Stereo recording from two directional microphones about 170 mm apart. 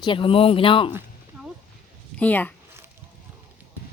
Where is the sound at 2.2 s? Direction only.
10° left (ahead or behind).